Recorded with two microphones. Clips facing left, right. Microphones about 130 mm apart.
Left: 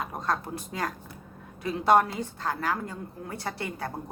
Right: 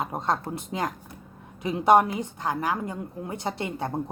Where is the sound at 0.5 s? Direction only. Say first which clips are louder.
Right 3 dB; 20° right (ahead or behind).